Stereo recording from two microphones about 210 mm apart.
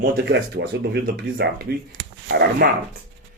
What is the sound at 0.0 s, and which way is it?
Speech, 55° right (ahead or behind).